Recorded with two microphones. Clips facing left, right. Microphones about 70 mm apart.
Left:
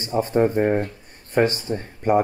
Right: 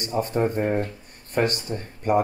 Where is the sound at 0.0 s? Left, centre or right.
Left.